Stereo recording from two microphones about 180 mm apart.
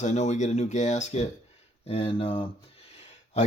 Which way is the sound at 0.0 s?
40° left (ahead or behind).